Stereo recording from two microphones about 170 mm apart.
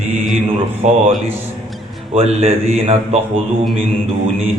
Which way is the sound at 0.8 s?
40° right (ahead or behind).